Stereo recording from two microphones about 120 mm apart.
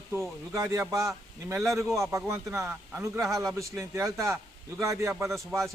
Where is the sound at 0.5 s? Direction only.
25° right (ahead or behind).